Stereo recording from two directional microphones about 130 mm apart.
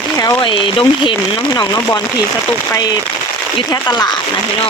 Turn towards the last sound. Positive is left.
turn(degrees=30)  # may be behind; listen again after turning